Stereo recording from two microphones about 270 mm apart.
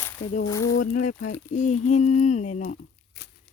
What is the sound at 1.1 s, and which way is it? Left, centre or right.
Speech, left.